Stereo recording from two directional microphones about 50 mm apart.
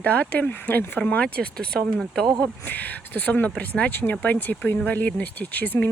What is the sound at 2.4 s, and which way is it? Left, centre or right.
Speech, left.